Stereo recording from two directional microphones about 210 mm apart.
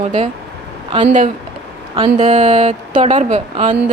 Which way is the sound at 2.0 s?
30° right (ahead or behind).